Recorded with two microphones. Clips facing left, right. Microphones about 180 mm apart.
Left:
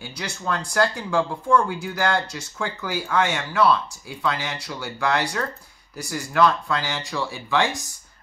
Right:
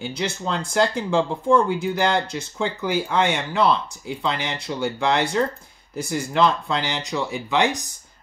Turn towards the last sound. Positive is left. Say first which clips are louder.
# right 2 dB
turn(degrees=-20)  # may be behind; listen again after turning